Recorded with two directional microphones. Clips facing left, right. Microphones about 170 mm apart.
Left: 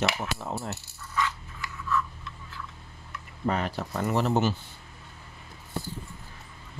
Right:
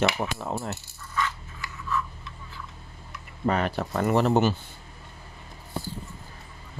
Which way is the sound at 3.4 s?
65° right (ahead or behind).